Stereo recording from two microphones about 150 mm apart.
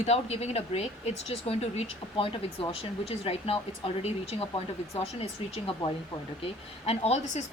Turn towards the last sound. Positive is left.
turn(degrees=50)  # may be behind; listen again after turning